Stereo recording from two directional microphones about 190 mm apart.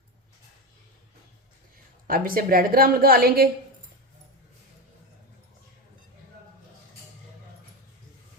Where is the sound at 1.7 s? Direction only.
50° right (ahead or behind).